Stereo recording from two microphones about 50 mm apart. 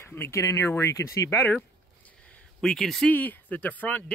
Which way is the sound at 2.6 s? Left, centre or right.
Centre.